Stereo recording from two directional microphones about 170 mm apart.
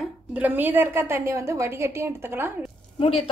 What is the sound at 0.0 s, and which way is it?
A woman's voice, 10° right (ahead or behind).